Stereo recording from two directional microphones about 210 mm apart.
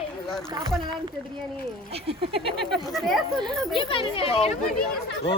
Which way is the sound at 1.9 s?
25° right (ahead or behind).